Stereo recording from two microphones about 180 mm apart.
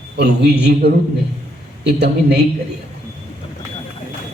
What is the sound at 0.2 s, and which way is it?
Speech, 65° right (ahead or behind).